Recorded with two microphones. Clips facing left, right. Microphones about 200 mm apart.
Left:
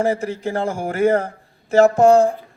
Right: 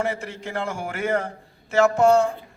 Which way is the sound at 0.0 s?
40° left (ahead or behind).